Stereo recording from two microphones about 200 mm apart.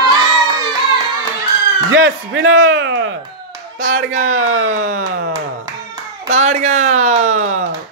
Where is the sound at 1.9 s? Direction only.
70° right (ahead or behind).